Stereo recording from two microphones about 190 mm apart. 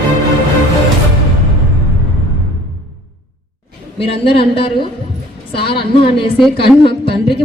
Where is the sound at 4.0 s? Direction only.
30° left (ahead or behind).